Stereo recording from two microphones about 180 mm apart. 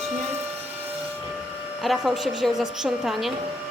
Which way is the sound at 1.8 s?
Centre (ahead or behind).